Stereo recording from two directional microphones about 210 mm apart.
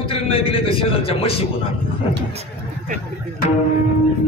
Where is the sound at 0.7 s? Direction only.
25° left (ahead or behind).